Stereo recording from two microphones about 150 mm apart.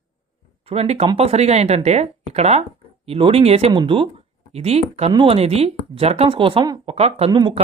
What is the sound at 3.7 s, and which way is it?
Speech, 30° right (ahead or behind).